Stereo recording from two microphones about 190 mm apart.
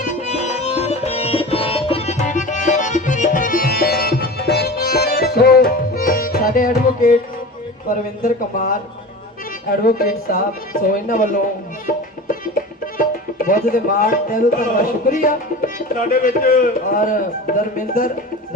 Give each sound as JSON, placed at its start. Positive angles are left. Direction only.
{"t": 0.0, "sound": "music", "side_deg": 40}
{"t": 7.9, "sound": "speech", "side_deg": 45}
{"t": 9.8, "sound": "speech", "side_deg": 45}
{"t": 12.8, "sound": "music", "side_deg": 45}
{"t": 16.2, "sound": "speech", "side_deg": 45}